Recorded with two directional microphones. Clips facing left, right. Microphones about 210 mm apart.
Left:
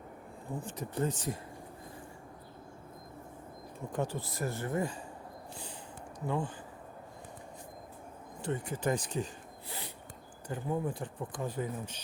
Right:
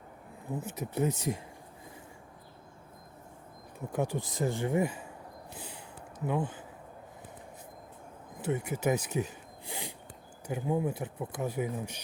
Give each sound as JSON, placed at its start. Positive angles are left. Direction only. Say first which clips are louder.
{"t": 0.5, "sound": "speech", "louder": "right 3 dB", "side_deg": -10}
{"t": 3.9, "sound": "speech", "louder": "right 3 dB", "side_deg": -15}
{"t": 6.1, "sound": "speech", "louder": "right 3 dB", "side_deg": -20}
{"t": 8.4, "sound": "speech", "louder": "right 3 dB", "side_deg": -10}